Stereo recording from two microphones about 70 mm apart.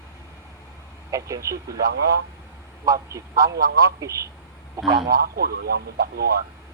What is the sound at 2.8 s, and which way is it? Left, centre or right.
A man's voice, right.